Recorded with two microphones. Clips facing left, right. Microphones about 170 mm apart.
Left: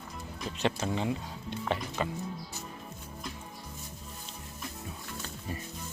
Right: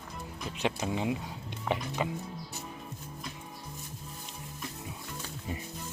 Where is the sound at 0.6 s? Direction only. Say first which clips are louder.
Left 1 dB; 10° right (ahead or behind).